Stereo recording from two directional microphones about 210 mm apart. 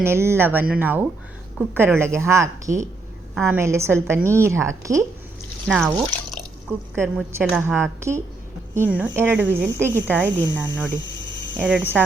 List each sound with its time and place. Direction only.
0.0 s speech: 10° right (ahead or behind)
2.7 s speech: 35° right (ahead or behind)
3.4 s speech: 15° right (ahead or behind)
5.6 s speech: 5° right (ahead or behind)
6.9 s speech: 10° right (ahead or behind)
11.5 s hum: 5° right (ahead or behind)